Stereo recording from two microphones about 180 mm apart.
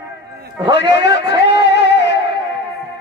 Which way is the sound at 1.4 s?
70° left (ahead or behind).